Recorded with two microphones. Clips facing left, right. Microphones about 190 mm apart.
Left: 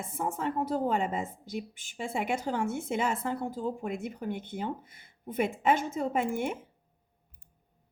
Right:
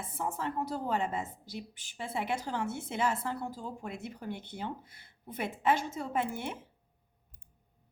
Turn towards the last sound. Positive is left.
turn(degrees=50)  # may be behind; listen again after turning